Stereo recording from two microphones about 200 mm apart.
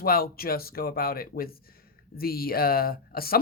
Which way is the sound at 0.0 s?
50° left (ahead or behind).